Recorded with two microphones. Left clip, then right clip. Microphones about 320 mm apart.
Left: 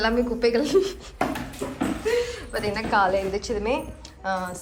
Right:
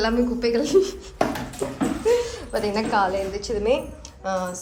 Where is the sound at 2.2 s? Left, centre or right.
Centre.